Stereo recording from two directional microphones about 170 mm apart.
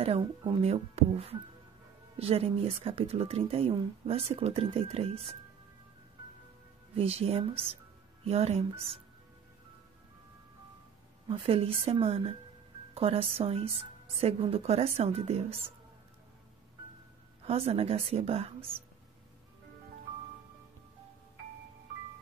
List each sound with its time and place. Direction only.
0.0 s speech: 35° right (ahead or behind)
7.0 s speech: 35° right (ahead or behind)
11.2 s speech: 35° right (ahead or behind)
17.5 s speech: 35° right (ahead or behind)